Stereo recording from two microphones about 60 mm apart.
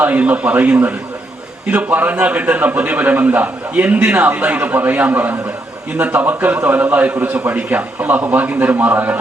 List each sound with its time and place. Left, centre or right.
0.0 s a man's voice: right